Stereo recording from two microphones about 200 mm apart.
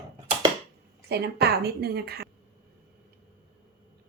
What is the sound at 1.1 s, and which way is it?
A woman's voice, 55° right (ahead or behind).